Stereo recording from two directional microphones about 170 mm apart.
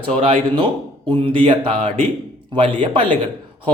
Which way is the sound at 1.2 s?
30° right (ahead or behind).